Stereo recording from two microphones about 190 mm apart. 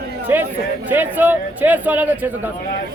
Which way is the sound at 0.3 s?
10° right (ahead or behind).